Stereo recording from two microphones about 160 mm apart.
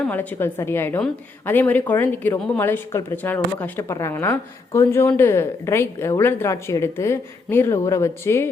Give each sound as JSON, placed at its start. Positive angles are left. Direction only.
{"t": 0.1, "sound": "a woman's voice", "side_deg": 10}